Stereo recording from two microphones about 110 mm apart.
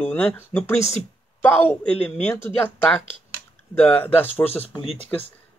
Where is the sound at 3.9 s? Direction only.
15° left (ahead or behind).